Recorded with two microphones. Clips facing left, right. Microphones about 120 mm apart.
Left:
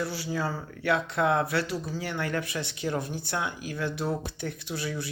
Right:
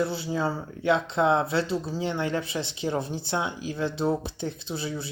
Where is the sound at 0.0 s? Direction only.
25° right (ahead or behind).